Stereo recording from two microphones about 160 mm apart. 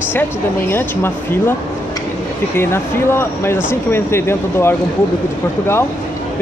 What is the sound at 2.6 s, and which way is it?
Speech, 15° left (ahead or behind).